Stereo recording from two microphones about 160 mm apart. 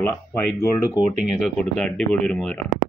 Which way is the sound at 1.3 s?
5° left (ahead or behind).